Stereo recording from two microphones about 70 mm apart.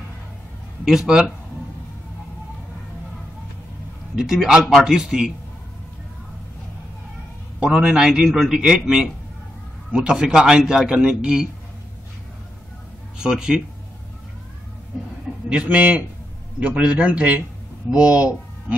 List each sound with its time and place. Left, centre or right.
0.8 s a man's voice: centre
4.1 s a man's voice: centre
7.6 s a man's voice: centre
13.2 s a man's voice: centre
15.5 s a man's voice: centre